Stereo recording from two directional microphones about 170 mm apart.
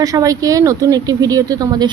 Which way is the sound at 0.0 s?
20° right (ahead or behind).